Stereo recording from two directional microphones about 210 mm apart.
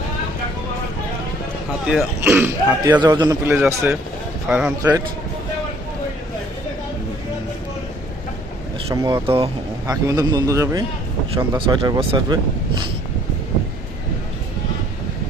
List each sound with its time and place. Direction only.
1.9 s a man's voice: 5° right (ahead or behind)
4.8 s speech: 15° right (ahead or behind)
8.9 s speech: 20° right (ahead or behind)
9.8 s speech: 15° right (ahead or behind)